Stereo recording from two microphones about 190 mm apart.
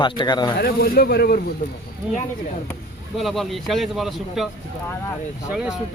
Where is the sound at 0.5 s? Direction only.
50° left (ahead or behind).